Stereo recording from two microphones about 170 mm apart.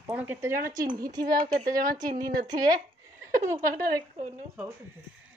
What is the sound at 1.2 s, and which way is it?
Speech, 55° right (ahead or behind).